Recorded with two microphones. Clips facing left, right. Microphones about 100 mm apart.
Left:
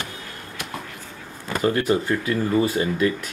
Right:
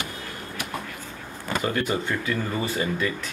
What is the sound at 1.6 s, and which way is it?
Speech, 35° left (ahead or behind).